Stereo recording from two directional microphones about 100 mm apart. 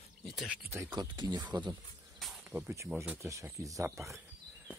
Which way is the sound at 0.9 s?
45° right (ahead or behind).